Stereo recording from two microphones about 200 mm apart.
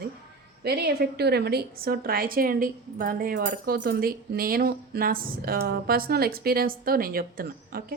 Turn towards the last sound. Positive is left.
turn(degrees=-45)  # may be behind; listen again after turning